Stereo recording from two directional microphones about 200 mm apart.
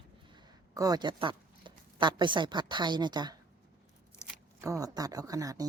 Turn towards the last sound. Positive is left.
turn(degrees=-15)  # may be behind; listen again after turning